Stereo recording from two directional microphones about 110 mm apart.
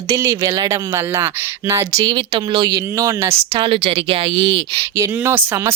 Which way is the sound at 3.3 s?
60° right (ahead or behind).